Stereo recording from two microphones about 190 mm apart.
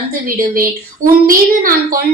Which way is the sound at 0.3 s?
50° right (ahead or behind).